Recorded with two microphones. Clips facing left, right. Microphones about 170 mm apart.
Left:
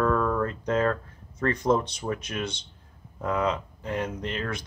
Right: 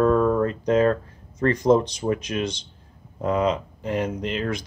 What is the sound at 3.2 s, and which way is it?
Speech, 20° right (ahead or behind).